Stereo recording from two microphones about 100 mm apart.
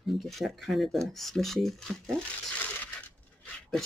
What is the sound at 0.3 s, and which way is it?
Speech, centre (ahead or behind).